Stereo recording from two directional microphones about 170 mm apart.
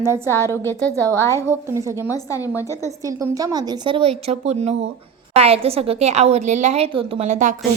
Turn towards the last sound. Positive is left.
turn(degrees=-45)  # may be behind; listen again after turning